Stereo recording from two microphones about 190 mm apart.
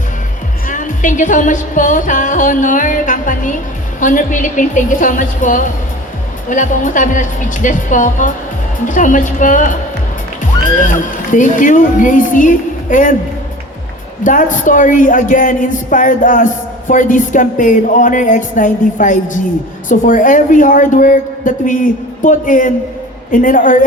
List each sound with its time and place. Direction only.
0.7 s music: 40° left (ahead or behind)
10.4 s speech: 40° left (ahead or behind)
14.3 s music: 40° left (ahead or behind)